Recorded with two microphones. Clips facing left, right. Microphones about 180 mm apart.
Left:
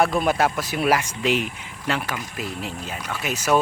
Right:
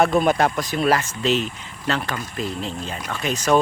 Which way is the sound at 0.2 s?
5° left (ahead or behind).